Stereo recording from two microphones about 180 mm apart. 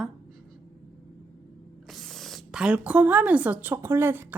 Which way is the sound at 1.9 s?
Centre (ahead or behind).